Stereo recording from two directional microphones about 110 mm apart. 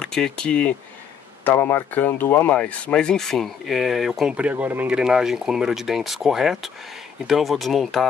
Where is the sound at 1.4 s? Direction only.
20° left (ahead or behind).